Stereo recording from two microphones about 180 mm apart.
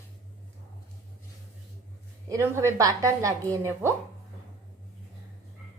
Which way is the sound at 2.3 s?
15° right (ahead or behind).